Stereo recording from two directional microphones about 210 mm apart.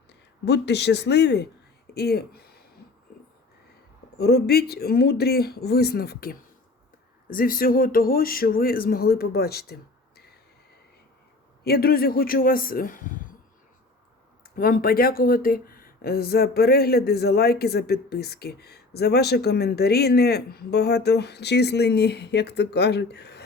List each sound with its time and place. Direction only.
0.1 s speech: 55° left (ahead or behind)
4.2 s speech: 50° left (ahead or behind)
11.6 s speech: 45° left (ahead or behind)
14.5 s speech: 45° left (ahead or behind)